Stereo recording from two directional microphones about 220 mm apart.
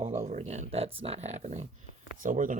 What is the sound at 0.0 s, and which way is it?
Speech, 30° right (ahead or behind).